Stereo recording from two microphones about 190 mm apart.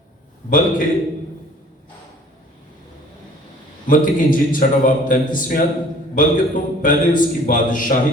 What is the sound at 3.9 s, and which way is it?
A man's voice, 45° left (ahead or behind).